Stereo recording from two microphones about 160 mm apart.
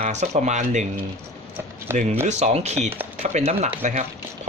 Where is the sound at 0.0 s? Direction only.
45° right (ahead or behind).